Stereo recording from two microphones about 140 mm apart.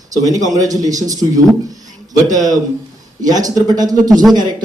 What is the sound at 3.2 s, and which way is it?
Speech, 25° right (ahead or behind).